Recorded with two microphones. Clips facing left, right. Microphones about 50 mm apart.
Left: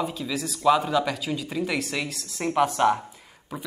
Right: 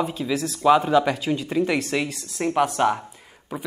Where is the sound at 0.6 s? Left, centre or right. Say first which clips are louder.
Right 4 dB; centre.